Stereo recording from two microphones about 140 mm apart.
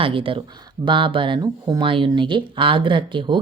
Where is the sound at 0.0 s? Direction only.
40° right (ahead or behind).